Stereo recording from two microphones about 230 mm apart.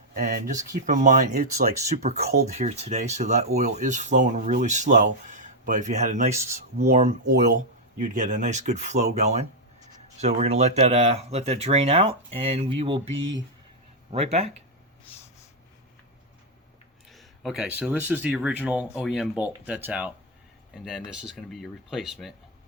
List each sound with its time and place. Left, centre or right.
0.1 s speech: right
2.1 s speech: right
2.5 s speech: right
7.3 s speech: right
14.1 s speech: right
17.1 s speech: centre